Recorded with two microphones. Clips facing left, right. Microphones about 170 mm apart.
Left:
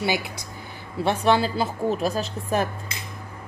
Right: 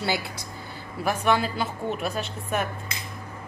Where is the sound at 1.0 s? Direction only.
30° left (ahead or behind).